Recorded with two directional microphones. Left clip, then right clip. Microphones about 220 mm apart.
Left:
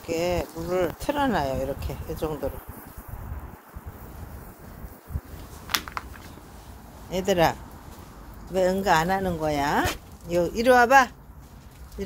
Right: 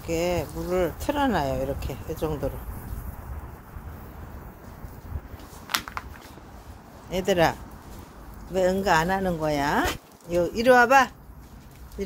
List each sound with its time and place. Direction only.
0.0 s speech: centre (ahead or behind)
5.7 s a sound: 35° left (ahead or behind)
7.1 s speech: centre (ahead or behind)
8.5 s speech: centre (ahead or behind)
10.2 s speech: 15° left (ahead or behind)